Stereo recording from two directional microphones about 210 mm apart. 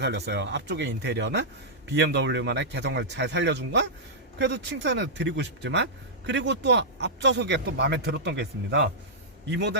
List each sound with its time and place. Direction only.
0.0 s speech: 55° right (ahead or behind)